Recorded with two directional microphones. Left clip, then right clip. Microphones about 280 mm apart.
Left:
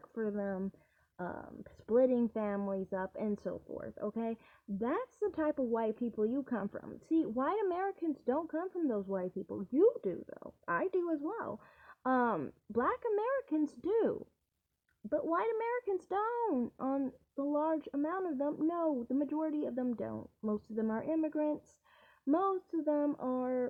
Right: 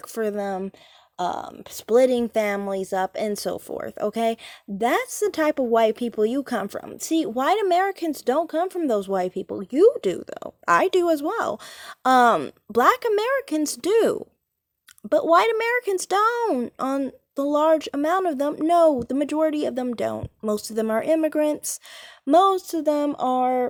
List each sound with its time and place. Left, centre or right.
0.1 s a woman's voice: right
10.1 s a woman's voice: right